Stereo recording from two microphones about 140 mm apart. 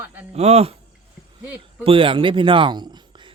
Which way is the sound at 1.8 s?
40° right (ahead or behind).